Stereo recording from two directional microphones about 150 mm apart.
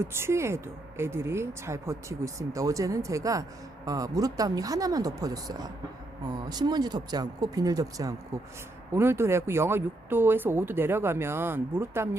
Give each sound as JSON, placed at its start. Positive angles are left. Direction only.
{"t": 0.0, "sound": "speech", "side_deg": -15}